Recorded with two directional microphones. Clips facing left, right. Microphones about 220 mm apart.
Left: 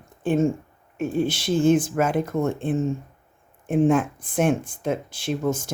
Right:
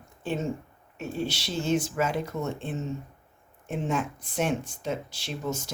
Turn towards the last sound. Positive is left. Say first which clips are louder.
# left 8 dB
turn(degrees=50)  # may be behind; listen again after turning